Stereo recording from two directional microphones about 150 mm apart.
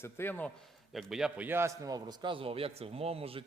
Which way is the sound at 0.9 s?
5° right (ahead or behind).